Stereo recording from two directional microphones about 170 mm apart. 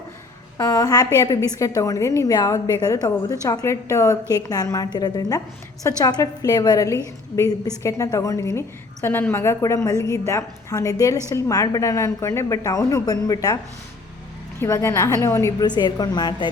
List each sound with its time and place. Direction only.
0.5 s a woman's voice: 20° left (ahead or behind)
14.6 s a woman's voice: 15° left (ahead or behind)